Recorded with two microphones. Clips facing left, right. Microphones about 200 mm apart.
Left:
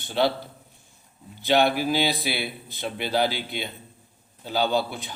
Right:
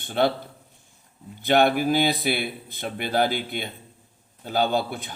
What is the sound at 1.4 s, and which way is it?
A man's voice, 50° right (ahead or behind).